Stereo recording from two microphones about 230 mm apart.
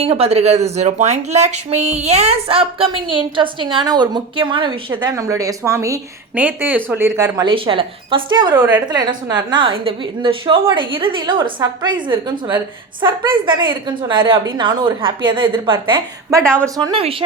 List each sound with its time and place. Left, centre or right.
0.0 s speech: right
8.5 s a woman's voice: centre
8.9 s speech: centre
16.4 s speech: centre
16.6 s speech: centre